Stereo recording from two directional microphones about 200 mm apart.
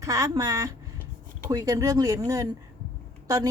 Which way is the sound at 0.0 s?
15° right (ahead or behind).